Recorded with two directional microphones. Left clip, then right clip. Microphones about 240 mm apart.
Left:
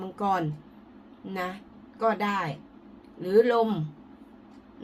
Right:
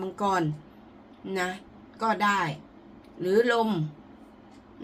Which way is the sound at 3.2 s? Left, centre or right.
Centre.